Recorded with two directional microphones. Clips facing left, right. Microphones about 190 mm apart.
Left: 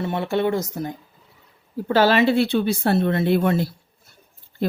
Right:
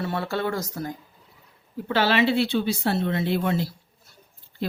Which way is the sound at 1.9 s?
45° left (ahead or behind).